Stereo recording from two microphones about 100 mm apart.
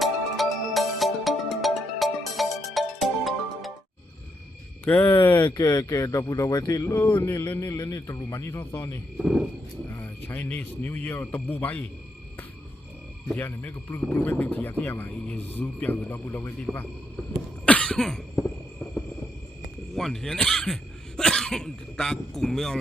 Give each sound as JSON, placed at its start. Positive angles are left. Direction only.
{"t": 0.0, "sound": "music", "side_deg": 0}
{"t": 4.9, "sound": "a man's voice", "side_deg": 20}
{"t": 5.5, "sound": "a man's voice", "side_deg": 40}
{"t": 9.1, "sound": "speech", "side_deg": 0}
{"t": 9.8, "sound": "a man's voice", "side_deg": 25}
{"t": 13.3, "sound": "a man's voice", "side_deg": 20}
{"t": 17.7, "sound": "cough", "side_deg": 10}
{"t": 20.0, "sound": "speech", "side_deg": 5}